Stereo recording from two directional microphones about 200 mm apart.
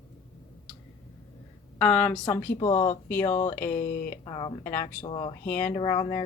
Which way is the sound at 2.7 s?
35° left (ahead or behind).